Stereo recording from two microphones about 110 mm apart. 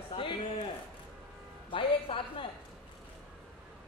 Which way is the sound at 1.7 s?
50° left (ahead or behind).